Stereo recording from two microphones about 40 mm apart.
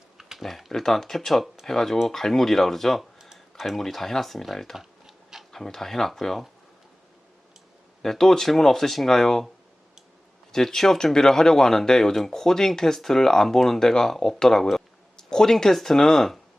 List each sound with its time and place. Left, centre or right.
0.2 s a sound: centre
0.7 s speech: centre
4.8 s typing: centre
5.5 s speech: centre
8.0 s speech: centre
10.5 s speech: centre
15.1 s speech: centre